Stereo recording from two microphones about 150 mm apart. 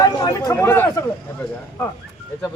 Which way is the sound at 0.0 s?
25° left (ahead or behind).